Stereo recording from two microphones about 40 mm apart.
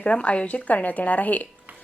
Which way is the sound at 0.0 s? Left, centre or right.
Left.